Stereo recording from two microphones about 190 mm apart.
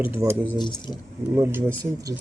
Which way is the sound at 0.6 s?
25° left (ahead or behind).